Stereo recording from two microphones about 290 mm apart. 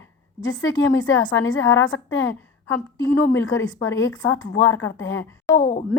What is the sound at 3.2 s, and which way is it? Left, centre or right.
A woman's voice, left.